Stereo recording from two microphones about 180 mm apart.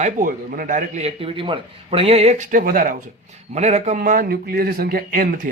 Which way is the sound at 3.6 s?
40° right (ahead or behind).